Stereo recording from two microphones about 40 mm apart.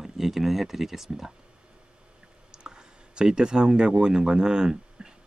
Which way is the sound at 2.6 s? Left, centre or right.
Centre.